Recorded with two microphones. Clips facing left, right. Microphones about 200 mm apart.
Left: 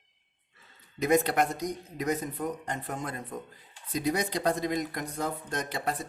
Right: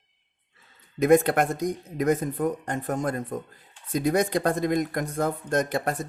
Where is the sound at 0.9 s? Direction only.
50° right (ahead or behind).